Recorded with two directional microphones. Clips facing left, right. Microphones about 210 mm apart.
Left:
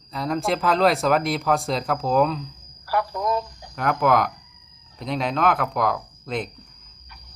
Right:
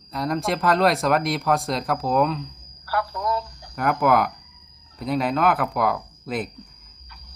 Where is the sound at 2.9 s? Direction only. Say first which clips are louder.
Left 2 dB; 20° left (ahead or behind).